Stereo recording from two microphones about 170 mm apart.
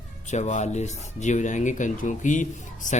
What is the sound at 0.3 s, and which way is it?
A man's voice, 45° left (ahead or behind).